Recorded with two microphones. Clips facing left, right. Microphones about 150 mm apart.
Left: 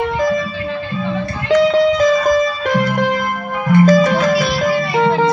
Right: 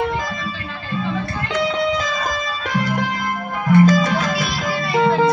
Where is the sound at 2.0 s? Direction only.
50° left (ahead or behind).